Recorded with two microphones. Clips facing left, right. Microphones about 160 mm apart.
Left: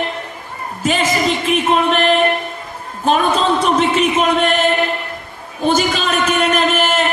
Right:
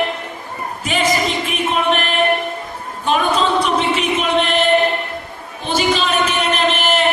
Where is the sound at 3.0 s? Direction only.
40° left (ahead or behind).